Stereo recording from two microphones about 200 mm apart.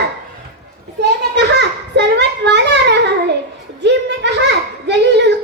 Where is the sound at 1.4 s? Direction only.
60° right (ahead or behind).